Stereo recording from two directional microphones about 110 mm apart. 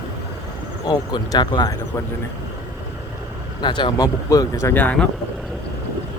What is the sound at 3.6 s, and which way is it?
Speech, 45° left (ahead or behind).